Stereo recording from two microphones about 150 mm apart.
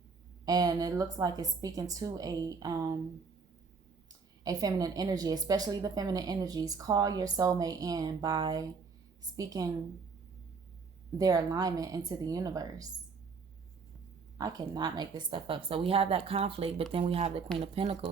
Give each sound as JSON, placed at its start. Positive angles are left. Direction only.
{"t": 0.4, "sound": "a woman's voice", "side_deg": -25}
{"t": 4.4, "sound": "a woman's voice", "side_deg": -25}
{"t": 11.2, "sound": "a woman's voice", "side_deg": -25}
{"t": 14.3, "sound": "speech", "side_deg": -25}